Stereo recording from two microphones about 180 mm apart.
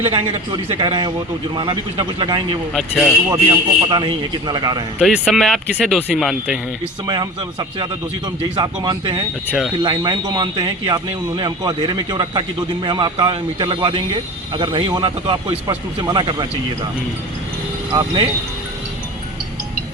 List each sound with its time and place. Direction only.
0.0 s a man's voice: 35° right (ahead or behind)
2.7 s speech: centre (ahead or behind)
3.2 s a man's voice: 20° right (ahead or behind)
4.9 s speech: centre (ahead or behind)
8.5 s a man's voice: 25° right (ahead or behind)
17.9 s a man's voice: 25° right (ahead or behind)